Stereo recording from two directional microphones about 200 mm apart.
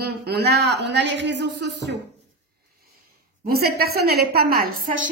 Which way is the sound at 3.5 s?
50° right (ahead or behind).